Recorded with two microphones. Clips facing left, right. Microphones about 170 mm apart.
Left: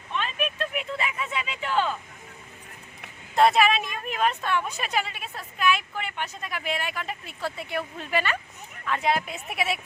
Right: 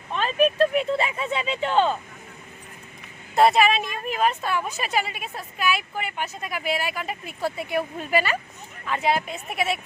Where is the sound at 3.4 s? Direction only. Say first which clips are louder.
Right 2 dB; centre (ahead or behind).